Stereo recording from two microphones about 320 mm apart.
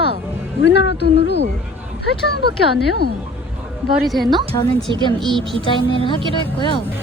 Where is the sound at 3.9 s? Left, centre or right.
Centre.